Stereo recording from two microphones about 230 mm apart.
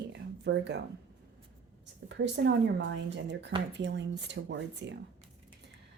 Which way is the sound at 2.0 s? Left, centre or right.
Right.